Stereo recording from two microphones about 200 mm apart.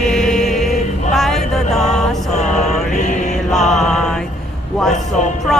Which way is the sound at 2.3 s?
35° left (ahead or behind).